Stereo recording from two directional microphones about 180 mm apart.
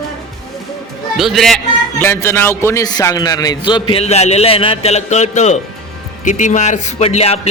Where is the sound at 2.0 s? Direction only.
15° left (ahead or behind); by 7.5 s 35° left (ahead or behind).